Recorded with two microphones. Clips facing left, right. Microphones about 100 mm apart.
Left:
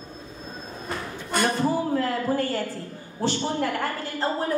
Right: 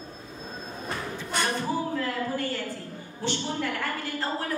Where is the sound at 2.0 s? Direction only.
40° left (ahead or behind).